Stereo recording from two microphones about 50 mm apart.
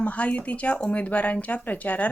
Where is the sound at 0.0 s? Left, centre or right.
Left.